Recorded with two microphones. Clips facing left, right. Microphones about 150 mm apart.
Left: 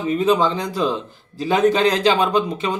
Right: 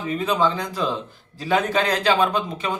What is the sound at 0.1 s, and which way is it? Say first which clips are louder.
Speech: left 4 dB; 20° left (ahead or behind).